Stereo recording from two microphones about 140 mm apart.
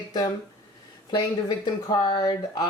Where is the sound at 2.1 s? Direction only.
35° left (ahead or behind).